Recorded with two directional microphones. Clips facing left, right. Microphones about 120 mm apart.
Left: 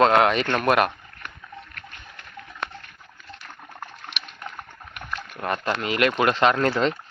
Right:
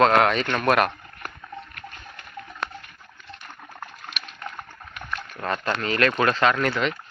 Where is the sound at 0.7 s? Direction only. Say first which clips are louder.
Even; 5° left (ahead or behind).